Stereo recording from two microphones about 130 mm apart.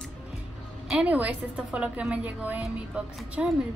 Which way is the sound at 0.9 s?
10° right (ahead or behind).